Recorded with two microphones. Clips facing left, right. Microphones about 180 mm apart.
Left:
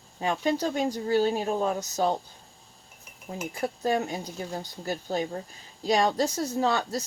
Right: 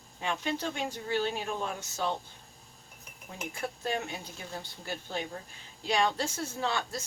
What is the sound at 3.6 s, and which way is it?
Speech, 40° left (ahead or behind).